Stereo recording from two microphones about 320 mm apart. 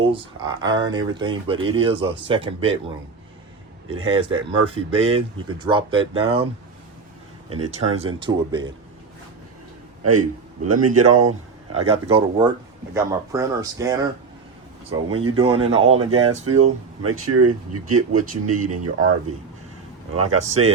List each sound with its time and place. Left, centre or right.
0.0 s speech: centre
3.8 s speech: centre
7.5 s speech: right
7.9 s speech: centre
10.0 s speech: right
11.3 s a sound: right
11.9 s speech: centre
15.7 s speech: right
20.1 s speech: right